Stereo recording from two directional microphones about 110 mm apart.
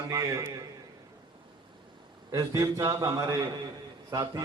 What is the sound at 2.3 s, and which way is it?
A man's voice, 35° right (ahead or behind).